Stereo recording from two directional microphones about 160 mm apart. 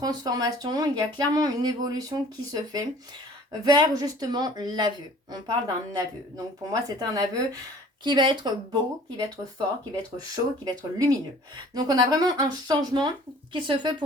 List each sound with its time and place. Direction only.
0.0 s speech: 25° right (ahead or behind)